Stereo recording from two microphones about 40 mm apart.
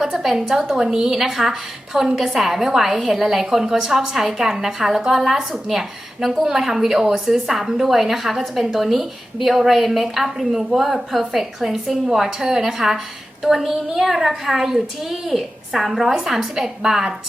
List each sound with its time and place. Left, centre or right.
0.0 s a woman's voice: centre
1.2 s a woman's voice: centre
7.0 s a woman's voice: centre
7.3 s a woman's voice: centre